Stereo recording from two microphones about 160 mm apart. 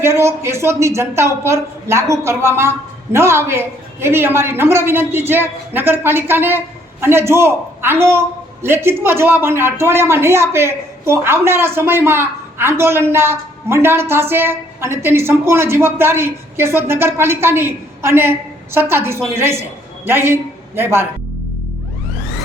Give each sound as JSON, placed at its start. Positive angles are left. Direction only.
{"t": 0.0, "sound": "a woman's voice", "side_deg": -15}